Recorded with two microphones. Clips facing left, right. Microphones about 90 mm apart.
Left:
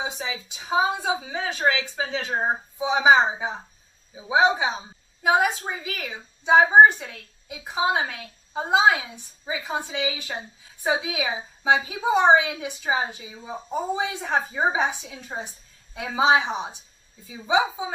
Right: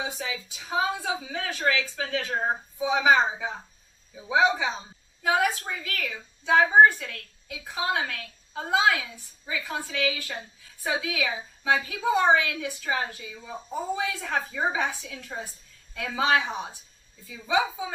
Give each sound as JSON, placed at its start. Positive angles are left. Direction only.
{"t": 0.0, "sound": "a woman's voice", "side_deg": 20}